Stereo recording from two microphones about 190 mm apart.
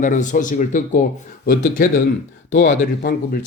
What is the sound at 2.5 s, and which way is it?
Speech, 70° left (ahead or behind).